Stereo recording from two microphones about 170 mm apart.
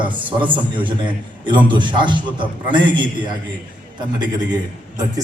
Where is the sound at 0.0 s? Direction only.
30° right (ahead or behind).